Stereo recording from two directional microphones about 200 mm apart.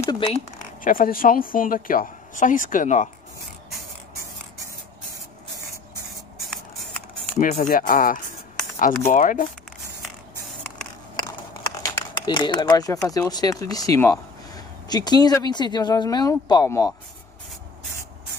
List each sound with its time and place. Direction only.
0.1 s speech: 25° left (ahead or behind)
0.8 s speech: 45° left (ahead or behind)
7.3 s speech: 40° left (ahead or behind)
10.5 s a sound: 5° left (ahead or behind)
11.7 s a sound: 20° left (ahead or behind)
13.1 s speech: 20° left (ahead or behind)